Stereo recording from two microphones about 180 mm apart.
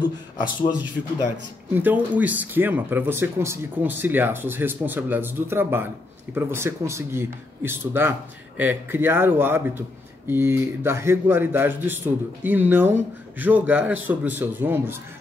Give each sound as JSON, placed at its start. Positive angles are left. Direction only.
{"t": 0.0, "sound": "a man's voice", "side_deg": 25}
{"t": 1.7, "sound": "speech", "side_deg": -10}